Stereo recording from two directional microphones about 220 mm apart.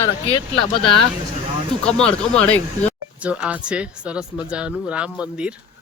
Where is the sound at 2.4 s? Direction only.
5° left (ahead or behind).